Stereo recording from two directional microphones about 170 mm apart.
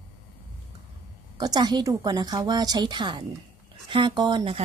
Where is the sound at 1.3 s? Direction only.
25° right (ahead or behind).